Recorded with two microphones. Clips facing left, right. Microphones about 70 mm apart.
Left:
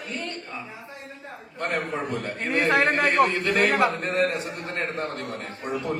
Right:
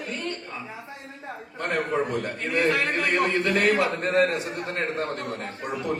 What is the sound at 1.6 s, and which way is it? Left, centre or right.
Speech, right.